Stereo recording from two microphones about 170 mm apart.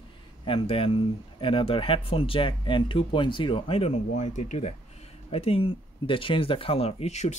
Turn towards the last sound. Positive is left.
turn(degrees=40)  # may be behind; listen again after turning